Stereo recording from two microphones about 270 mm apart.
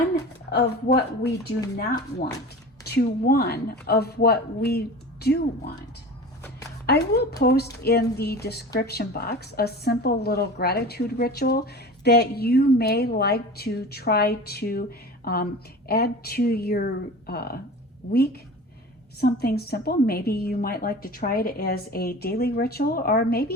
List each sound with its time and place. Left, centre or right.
0.9 s a woman's voice: left
6.8 s a woman's voice: left
19.2 s a woman's voice: left